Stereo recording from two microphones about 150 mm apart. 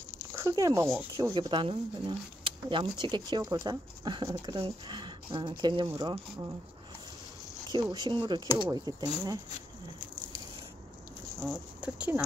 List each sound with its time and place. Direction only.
0.4 s speech: 20° right (ahead or behind)
1.3 s speech: 30° right (ahead or behind)
7.9 s speech: 30° right (ahead or behind)
11.4 s speech: 10° right (ahead or behind)